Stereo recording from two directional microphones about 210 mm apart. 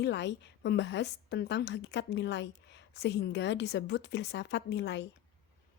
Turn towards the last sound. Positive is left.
turn(degrees=55)  # may be behind; listen again after turning